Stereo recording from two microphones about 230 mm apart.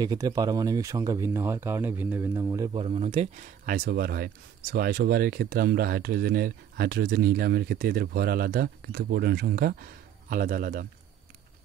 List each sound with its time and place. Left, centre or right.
0.0 s speech: centre; by 10.9 s right